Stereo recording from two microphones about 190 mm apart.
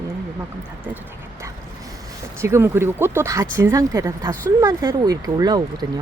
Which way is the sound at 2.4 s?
10° right (ahead or behind).